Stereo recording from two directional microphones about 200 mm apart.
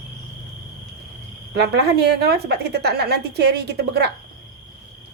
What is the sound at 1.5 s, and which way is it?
A woman's voice, 55° right (ahead or behind).